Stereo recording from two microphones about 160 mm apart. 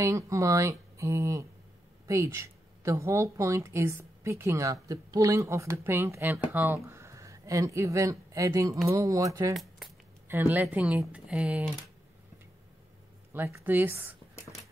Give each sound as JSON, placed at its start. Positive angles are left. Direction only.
{"t": 0.0, "sound": "speech", "side_deg": -20}
{"t": 9.5, "sound": "keys jangling", "side_deg": 0}
{"t": 10.2, "sound": "speech", "side_deg": -15}
{"t": 13.3, "sound": "speech", "side_deg": -15}